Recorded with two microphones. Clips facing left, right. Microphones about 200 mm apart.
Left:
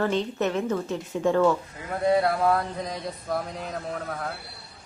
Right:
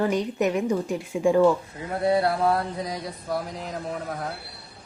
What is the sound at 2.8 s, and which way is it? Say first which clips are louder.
Speech: right 1 dB; 10° right (ahead or behind).